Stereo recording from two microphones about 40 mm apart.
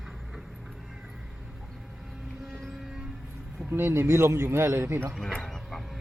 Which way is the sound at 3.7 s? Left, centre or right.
Right.